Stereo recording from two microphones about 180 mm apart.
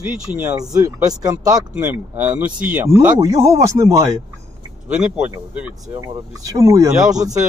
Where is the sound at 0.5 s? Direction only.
20° right (ahead or behind).